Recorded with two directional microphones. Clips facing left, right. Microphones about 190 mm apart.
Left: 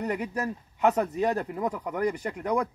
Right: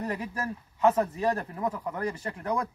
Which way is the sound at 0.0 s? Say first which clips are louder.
Left 3 dB; 15° left (ahead or behind).